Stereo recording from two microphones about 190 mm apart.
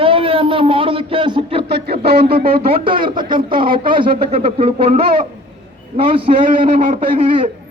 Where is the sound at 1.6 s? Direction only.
55° right (ahead or behind).